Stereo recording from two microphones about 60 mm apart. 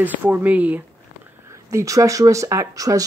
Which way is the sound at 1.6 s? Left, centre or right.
Right.